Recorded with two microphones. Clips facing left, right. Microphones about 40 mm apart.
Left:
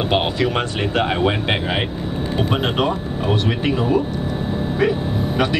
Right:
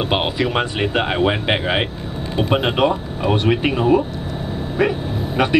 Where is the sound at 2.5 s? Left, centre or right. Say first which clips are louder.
Right 5 dB; right.